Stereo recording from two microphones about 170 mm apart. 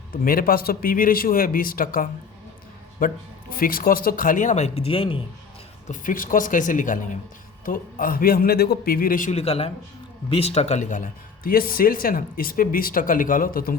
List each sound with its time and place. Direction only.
0.1 s speech: 55° left (ahead or behind); by 5.2 s 30° left (ahead or behind)
5.9 s speech: 55° left (ahead or behind)
9.3 s a man's voice: 35° left (ahead or behind); by 13.7 s 60° left (ahead or behind)